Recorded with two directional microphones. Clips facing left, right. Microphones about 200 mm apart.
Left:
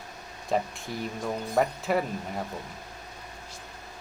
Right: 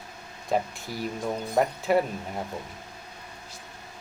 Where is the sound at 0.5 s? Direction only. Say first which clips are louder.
Right 1 dB; centre (ahead or behind).